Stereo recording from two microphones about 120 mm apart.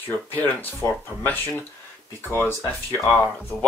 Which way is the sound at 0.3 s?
15° left (ahead or behind).